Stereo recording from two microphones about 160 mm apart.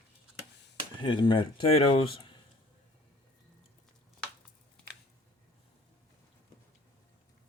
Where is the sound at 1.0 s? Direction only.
30° left (ahead or behind).